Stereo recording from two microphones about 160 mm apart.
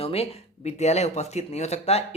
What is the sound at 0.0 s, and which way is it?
Speech, 40° left (ahead or behind).